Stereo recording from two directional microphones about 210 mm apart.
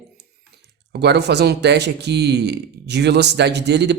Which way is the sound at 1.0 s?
55° right (ahead or behind).